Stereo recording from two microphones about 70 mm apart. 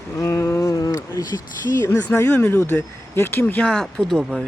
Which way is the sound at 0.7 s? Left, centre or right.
Left.